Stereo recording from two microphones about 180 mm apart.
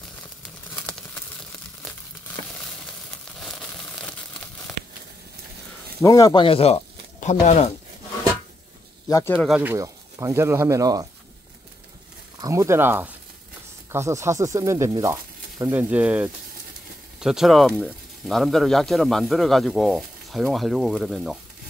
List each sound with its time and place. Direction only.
2.5 s a sound: 5° left (ahead or behind)
6.0 s speech: 20° left (ahead or behind); by 7.7 s 35° left (ahead or behind)
9.1 s speech: 10° left (ahead or behind)
9.5 s speech: 10° right (ahead or behind)
12.4 s speech: 15° right (ahead or behind); by 21.4 s centre (ahead or behind)